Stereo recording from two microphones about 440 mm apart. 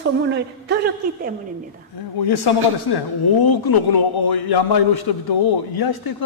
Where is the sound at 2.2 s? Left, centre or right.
Left.